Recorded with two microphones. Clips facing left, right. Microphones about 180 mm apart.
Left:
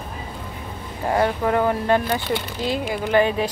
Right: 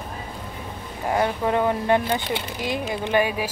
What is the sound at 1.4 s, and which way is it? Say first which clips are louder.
Speech: left 1 dB; 20° right (ahead or behind).